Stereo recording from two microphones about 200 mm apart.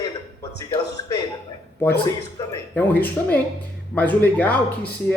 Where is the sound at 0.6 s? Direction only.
15° left (ahead or behind).